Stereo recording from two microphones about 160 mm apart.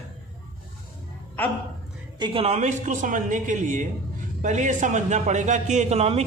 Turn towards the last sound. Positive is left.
turn(degrees=-40)  # may be behind; listen again after turning